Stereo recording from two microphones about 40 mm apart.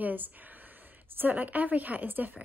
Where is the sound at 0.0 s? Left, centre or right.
Right.